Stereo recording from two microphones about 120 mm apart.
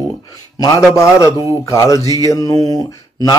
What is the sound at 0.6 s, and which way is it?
A man's voice, 30° left (ahead or behind).